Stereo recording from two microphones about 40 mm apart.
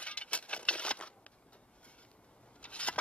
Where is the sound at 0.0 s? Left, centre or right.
Left.